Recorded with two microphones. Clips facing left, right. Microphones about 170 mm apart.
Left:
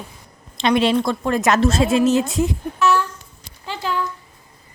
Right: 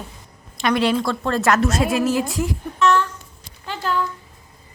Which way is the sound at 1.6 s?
25° left (ahead or behind).